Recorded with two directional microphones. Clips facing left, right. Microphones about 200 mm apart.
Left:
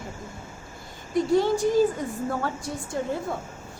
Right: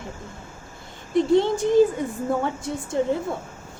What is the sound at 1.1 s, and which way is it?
Speech, 25° right (ahead or behind).